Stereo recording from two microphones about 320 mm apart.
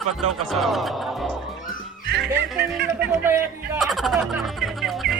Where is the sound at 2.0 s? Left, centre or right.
Right.